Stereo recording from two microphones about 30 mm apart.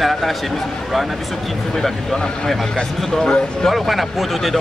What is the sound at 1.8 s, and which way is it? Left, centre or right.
Speech, centre.